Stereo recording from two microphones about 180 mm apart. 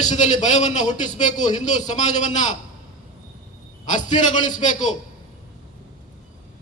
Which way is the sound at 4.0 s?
45° left (ahead or behind).